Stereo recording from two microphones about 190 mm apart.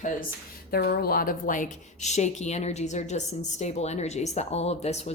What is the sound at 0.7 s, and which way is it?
A woman's voice, 55° left (ahead or behind).